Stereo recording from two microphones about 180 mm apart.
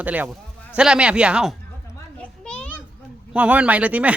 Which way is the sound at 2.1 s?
5° left (ahead or behind).